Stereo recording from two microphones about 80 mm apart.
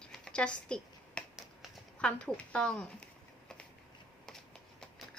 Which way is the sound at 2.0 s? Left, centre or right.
Centre.